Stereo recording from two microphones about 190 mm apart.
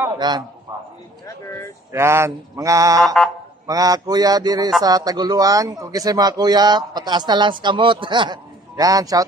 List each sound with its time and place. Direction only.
0.0 s a man's voice: 25° right (ahead or behind)
1.9 s mantra: 15° right (ahead or behind)
3.6 s a man's voice: 20° right (ahead or behind)